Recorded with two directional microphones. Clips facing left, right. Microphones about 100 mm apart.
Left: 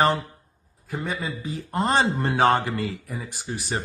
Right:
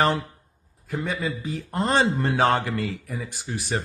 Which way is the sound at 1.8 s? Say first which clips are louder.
Even; 20° left (ahead or behind).